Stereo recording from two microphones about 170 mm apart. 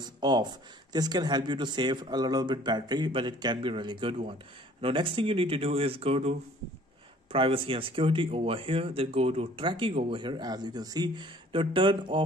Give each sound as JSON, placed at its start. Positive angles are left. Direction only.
{"t": 0.0, "sound": "speech", "side_deg": -25}
{"t": 7.3, "sound": "speech", "side_deg": -30}